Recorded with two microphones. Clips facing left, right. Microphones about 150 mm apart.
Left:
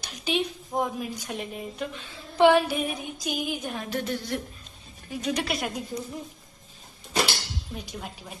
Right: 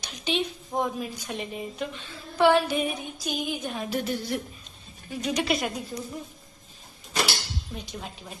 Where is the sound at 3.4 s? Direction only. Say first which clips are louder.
Even; 5° left (ahead or behind).